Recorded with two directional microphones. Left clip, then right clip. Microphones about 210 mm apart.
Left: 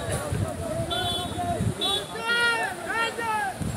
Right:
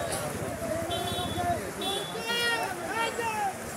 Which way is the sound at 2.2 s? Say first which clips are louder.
Left 6 dB; 25° left (ahead or behind).